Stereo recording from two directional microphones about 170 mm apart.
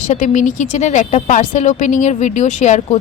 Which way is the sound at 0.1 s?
50° left (ahead or behind).